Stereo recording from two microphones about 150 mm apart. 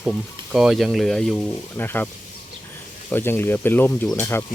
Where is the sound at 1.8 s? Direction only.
15° left (ahead or behind).